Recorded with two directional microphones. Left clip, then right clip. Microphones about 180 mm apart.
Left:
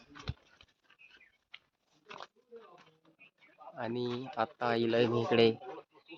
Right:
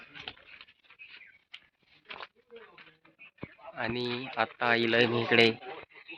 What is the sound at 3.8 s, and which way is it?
Speech, 15° left (ahead or behind).